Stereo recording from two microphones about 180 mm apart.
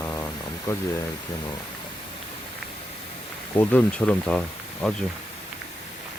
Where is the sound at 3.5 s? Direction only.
10° left (ahead or behind).